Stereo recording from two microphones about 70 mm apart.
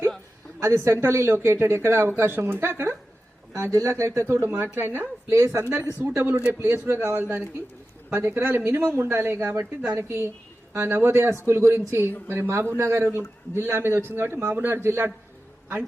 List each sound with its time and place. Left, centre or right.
0.6 s speech: right
3.5 s speech: right
7.2 s speech: right
8.1 s speech: right